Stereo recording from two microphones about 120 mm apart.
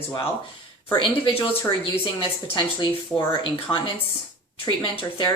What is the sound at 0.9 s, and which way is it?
A woman's voice, 50° left (ahead or behind).